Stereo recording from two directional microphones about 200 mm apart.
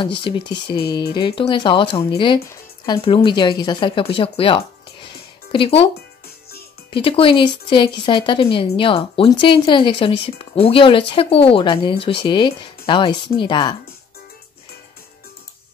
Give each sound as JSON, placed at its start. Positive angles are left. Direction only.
{"t": 0.0, "sound": "speech", "side_deg": 25}
{"t": 6.9, "sound": "speech", "side_deg": 25}